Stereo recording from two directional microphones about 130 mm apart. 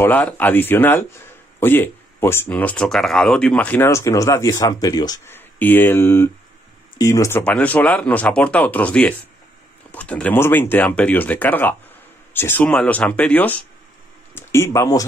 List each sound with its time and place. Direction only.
0.0 s speech: 15° left (ahead or behind); by 5.2 s 30° left (ahead or behind)
5.2 s speech: 15° left (ahead or behind)
7.4 s speech: 10° left (ahead or behind); by 15.0 s 25° left (ahead or behind)